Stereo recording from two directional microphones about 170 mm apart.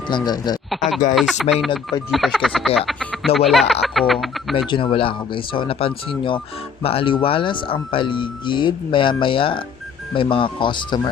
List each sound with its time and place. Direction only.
0.3 s speech: 25° left (ahead or behind)
0.7 s a sound: centre (ahead or behind)
1.1 s speech: centre (ahead or behind)
4.5 s speech: 30° left (ahead or behind)